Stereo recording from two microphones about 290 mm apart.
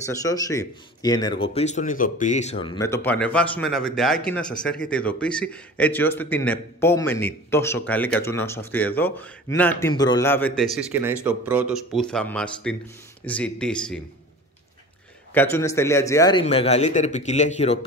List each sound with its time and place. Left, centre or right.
0.0 s speech: centre
15.3 s a man's voice: centre